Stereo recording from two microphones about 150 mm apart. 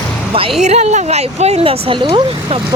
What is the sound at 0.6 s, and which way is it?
Speech, 50° right (ahead or behind).